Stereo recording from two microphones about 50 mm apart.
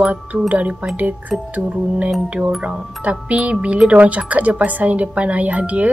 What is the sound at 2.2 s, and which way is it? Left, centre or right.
Speech, right.